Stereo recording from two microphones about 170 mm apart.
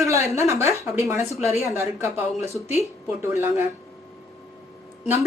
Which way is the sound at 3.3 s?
15° right (ahead or behind).